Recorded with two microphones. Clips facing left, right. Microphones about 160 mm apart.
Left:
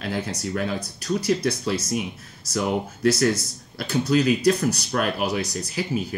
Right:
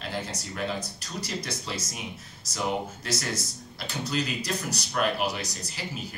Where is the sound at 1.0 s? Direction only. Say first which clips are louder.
Left 17 dB; 60° left (ahead or behind).